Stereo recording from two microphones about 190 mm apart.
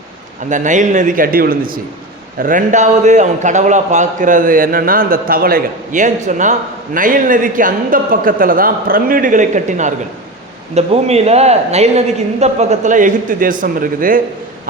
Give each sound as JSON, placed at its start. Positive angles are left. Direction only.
{"t": 0.5, "sound": "a man's voice", "side_deg": -40}